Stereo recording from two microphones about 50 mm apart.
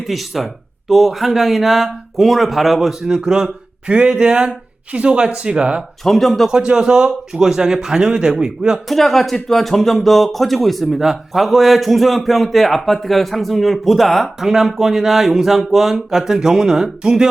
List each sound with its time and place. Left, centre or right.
0.1 s speech: centre
3.1 s speech: centre
6.1 s speech: centre
6.5 s a sound: centre
8.9 s speech: centre
14.8 s a sound: centre